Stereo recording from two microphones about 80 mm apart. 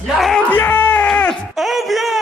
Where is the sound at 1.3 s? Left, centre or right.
Centre.